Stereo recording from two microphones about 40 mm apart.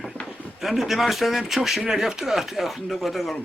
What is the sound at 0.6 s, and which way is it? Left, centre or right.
Speech, centre.